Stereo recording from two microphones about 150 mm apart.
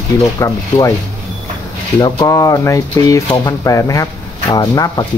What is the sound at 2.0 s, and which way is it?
Speech, 25° left (ahead or behind).